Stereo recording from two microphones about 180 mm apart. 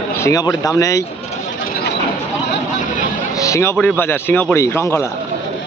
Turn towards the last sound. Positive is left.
turn(degrees=15)  # may be behind; listen again after turning